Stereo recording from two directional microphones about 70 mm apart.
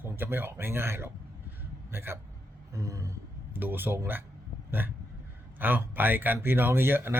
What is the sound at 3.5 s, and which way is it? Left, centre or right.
Speech, right.